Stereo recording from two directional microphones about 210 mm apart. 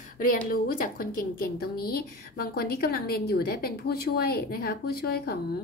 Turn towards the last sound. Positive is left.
turn(degrees=50)  # may be behind; listen again after turning